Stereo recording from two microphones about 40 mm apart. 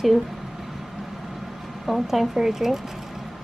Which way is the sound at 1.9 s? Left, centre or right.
Centre.